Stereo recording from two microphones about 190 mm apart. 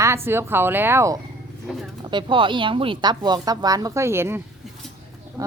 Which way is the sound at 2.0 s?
25° right (ahead or behind).